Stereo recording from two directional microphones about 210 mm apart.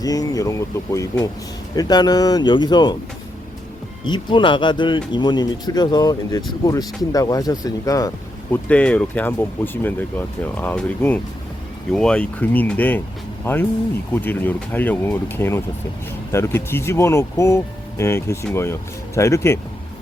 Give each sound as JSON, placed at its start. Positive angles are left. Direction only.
{"t": 0.0, "sound": "speech", "side_deg": 15}
{"t": 4.1, "sound": "speech", "side_deg": 20}
{"t": 8.6, "sound": "speech", "side_deg": 5}